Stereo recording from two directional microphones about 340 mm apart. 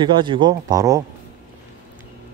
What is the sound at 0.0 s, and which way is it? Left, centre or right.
Speech, centre.